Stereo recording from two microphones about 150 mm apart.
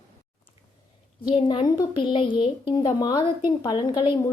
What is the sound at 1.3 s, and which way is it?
A woman's voice, 30° left (ahead or behind).